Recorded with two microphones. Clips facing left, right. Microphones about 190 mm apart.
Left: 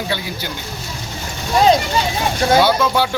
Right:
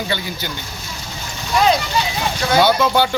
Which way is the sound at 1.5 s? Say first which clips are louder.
Left 3 dB; 35° left (ahead or behind).